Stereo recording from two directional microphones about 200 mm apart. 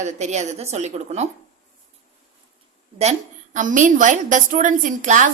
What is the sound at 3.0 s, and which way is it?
A woman's voice, 35° right (ahead or behind).